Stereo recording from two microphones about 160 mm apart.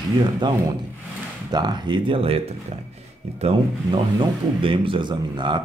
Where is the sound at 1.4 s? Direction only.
25° right (ahead or behind).